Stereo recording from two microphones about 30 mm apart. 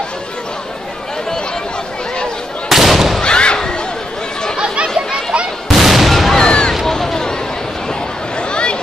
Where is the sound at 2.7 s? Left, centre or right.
Centre.